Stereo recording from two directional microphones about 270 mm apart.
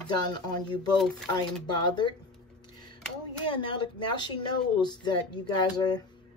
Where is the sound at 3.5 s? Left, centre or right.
Centre.